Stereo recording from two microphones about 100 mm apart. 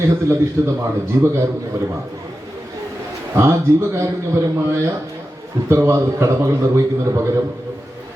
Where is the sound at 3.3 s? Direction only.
25° right (ahead or behind).